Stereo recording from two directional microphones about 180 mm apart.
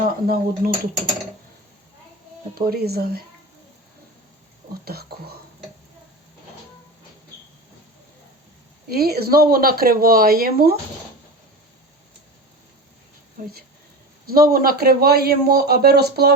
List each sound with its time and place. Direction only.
0.0 s speech: 50° right (ahead or behind)
2.6 s speech: 60° right (ahead or behind)
4.7 s speech: 60° right (ahead or behind)
8.9 s speech: 60° right (ahead or behind)
14.3 s speech: 55° right (ahead or behind)